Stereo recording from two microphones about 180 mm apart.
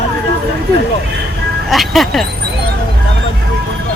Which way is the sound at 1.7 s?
Centre (ahead or behind).